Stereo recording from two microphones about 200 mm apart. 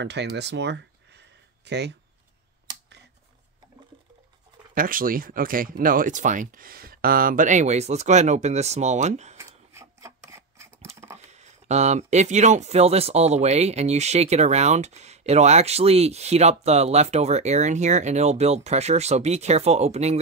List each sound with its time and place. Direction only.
0.0 s speech: 60° right (ahead or behind)
4.7 s speech: 45° right (ahead or behind)
9.8 s filing: 15° right (ahead or behind)
11.1 s speech: 35° right (ahead or behind)